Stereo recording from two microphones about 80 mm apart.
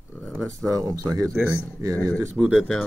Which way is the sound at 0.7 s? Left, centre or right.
Right.